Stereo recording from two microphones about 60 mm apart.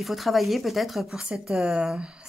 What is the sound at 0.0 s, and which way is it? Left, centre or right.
Speech, centre.